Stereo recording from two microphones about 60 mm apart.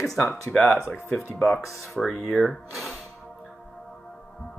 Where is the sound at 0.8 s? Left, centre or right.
Left.